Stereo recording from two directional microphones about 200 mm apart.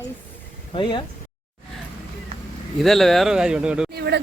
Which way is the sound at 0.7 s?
25° left (ahead or behind).